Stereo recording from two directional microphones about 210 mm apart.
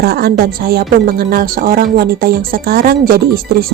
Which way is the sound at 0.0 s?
50° right (ahead or behind).